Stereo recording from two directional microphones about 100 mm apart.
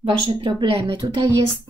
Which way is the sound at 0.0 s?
60° right (ahead or behind).